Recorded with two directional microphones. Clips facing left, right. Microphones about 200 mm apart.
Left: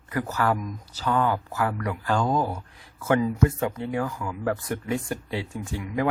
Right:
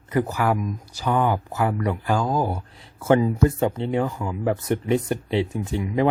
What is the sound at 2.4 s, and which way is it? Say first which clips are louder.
Speech: right 3 dB; 25° right (ahead or behind).